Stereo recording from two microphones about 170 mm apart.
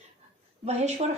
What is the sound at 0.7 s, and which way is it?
Speech, 40° right (ahead or behind).